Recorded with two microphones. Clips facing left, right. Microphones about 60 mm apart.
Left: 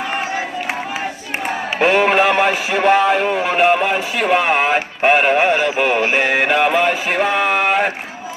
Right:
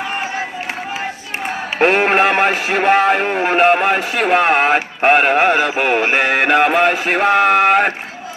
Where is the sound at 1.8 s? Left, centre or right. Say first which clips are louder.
Right 1 dB; right.